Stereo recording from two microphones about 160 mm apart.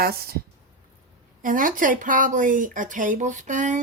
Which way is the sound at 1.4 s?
55° right (ahead or behind).